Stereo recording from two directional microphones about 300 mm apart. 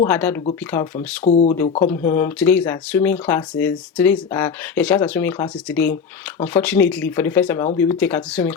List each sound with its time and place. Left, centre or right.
0.0 s speech: centre
1.2 s speech: left
1.8 s speech: centre